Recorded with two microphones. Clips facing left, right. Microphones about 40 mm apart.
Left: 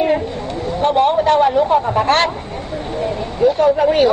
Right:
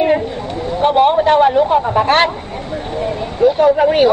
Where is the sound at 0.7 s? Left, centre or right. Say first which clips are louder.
Right 3 dB; centre.